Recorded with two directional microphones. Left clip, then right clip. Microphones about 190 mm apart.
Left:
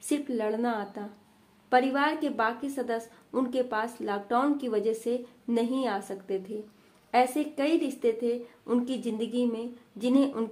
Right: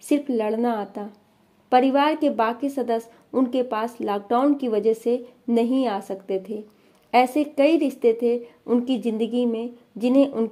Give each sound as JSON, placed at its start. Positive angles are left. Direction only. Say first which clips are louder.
{"t": 0.0, "sound": "a woman's voice", "louder": "right 7 dB", "side_deg": -35}